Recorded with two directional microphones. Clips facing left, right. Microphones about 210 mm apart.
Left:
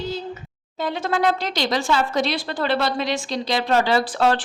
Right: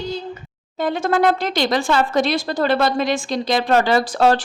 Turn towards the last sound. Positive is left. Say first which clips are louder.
# right 3 dB
turn(degrees=-40)  # may be behind; listen again after turning